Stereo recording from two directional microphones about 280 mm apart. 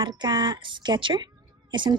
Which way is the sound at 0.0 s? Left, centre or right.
Centre.